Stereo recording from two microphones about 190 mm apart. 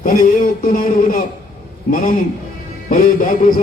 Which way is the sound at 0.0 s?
45° left (ahead or behind).